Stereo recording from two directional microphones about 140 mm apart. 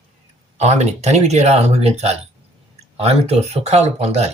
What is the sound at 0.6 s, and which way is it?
Speech, 50° right (ahead or behind).